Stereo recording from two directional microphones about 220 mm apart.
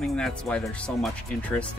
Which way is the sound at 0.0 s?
5° left (ahead or behind).